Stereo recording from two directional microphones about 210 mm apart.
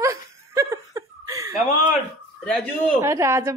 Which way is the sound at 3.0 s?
15° right (ahead or behind).